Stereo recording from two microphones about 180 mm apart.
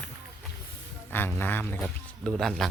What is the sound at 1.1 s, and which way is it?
Speech, 10° left (ahead or behind).